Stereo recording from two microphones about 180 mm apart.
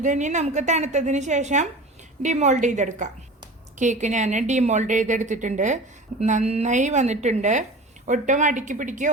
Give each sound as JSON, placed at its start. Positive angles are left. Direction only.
{"t": 0.0, "sound": "a woman's voice", "side_deg": -45}